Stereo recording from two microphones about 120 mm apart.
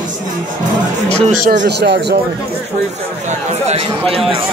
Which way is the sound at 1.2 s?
90° right.